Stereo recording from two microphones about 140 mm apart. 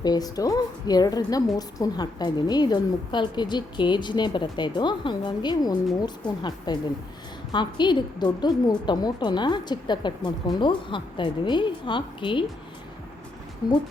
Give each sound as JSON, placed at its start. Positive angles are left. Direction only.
{"t": 0.0, "sound": "a woman's voice", "side_deg": 30}